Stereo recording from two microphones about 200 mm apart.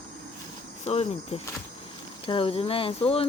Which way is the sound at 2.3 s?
25° left (ahead or behind).